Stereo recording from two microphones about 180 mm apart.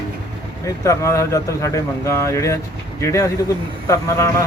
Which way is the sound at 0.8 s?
15° left (ahead or behind).